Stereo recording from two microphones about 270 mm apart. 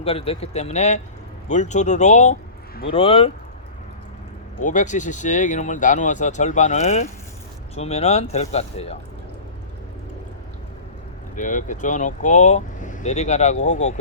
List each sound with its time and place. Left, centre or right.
0.0 s speech: left
4.6 s speech: left
11.3 s speech: left